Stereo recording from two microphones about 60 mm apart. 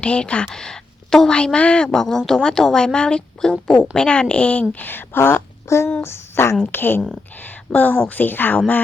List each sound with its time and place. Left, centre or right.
0.0 s speech: left
0.4 s speech: centre
1.5 s speech: left
1.9 s speech: centre; by 5.4 s left
5.6 s speech: left